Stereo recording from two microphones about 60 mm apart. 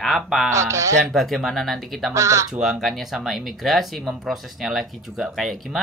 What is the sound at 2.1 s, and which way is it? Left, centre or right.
Speech, right.